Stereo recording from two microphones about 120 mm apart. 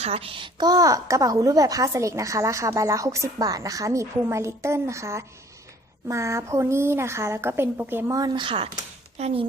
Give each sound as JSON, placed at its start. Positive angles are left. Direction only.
{"t": 0.0, "sound": "a woman's voice", "side_deg": -55}
{"t": 8.1, "sound": "speech", "side_deg": -30}
{"t": 8.4, "sound": "speech", "side_deg": -50}